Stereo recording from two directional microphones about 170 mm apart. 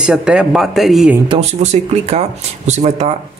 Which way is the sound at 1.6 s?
40° right (ahead or behind).